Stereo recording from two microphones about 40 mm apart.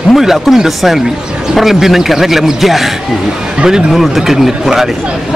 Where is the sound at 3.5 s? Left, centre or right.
Centre.